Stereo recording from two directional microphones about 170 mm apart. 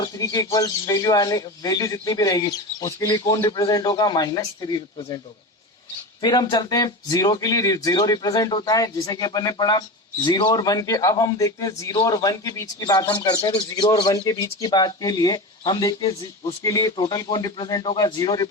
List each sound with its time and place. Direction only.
0.0 s a man's voice: 20° left (ahead or behind)
6.2 s a man's voice: 25° left (ahead or behind)